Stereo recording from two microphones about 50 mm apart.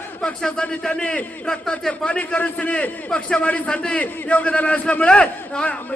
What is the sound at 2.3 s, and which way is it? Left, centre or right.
A man's voice, left.